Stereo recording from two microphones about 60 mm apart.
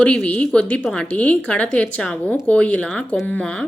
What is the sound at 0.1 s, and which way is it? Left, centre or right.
Speech, left.